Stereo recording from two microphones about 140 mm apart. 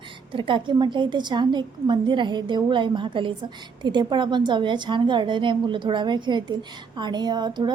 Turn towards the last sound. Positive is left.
turn(degrees=-30)  # may be behind; listen again after turning